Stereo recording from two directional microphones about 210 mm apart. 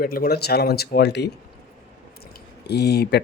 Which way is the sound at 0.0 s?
45° left (ahead or behind).